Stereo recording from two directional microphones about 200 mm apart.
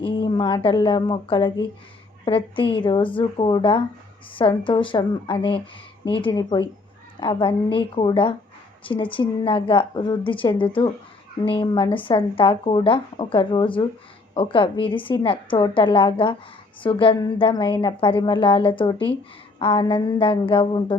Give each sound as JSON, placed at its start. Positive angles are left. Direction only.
{"t": 0.0, "sound": "speech", "side_deg": 25}